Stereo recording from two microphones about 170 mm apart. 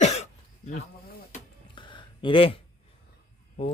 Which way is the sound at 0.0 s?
40° left (ahead or behind).